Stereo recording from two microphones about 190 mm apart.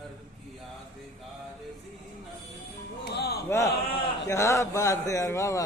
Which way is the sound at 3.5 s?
15° left (ahead or behind).